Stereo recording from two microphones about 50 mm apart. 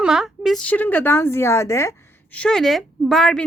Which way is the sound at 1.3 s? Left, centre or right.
Left.